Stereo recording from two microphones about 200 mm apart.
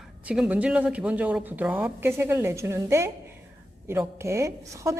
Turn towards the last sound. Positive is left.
turn(degrees=-15)  # may be behind; listen again after turning